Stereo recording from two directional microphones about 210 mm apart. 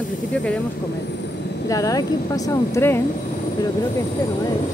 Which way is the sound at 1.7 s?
15° left (ahead or behind).